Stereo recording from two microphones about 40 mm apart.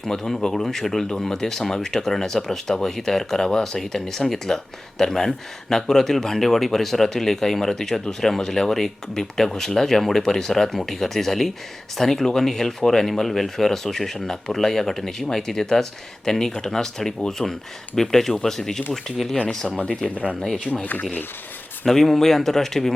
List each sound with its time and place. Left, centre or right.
0.1 s speech: centre
19.7 s speech: left
20.7 s speech: centre
21.8 s speech: centre